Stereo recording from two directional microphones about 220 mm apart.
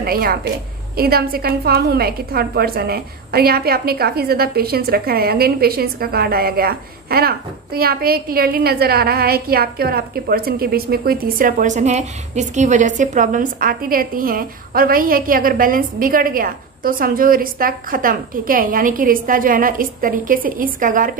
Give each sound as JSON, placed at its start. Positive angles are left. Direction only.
{"t": 0.0, "sound": "a woman's voice", "side_deg": -45}